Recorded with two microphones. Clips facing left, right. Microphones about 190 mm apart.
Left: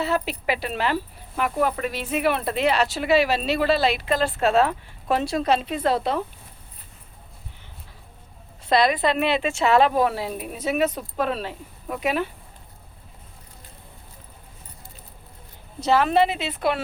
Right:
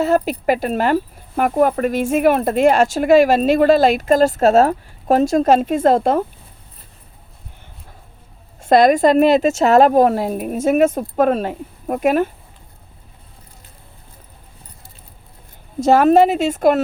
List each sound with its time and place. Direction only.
0.0 s speech: 45° right (ahead or behind)
8.6 s speech: 50° right (ahead or behind)
15.8 s speech: 45° right (ahead or behind)